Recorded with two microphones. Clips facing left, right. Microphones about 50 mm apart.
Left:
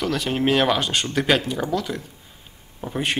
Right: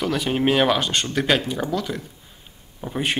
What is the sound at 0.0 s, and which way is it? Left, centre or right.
Speech, centre.